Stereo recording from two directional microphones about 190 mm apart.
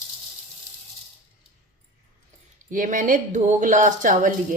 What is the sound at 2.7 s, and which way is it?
Speech, 45° right (ahead or behind).